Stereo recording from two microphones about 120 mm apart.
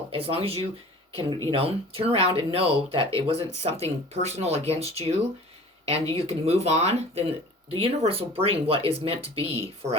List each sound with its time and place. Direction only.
0.1 s speech: 55° right (ahead or behind)